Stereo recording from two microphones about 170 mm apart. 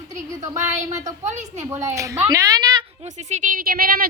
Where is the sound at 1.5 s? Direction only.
15° right (ahead or behind).